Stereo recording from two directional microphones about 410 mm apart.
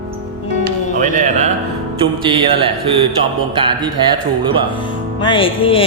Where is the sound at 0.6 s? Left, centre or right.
Centre.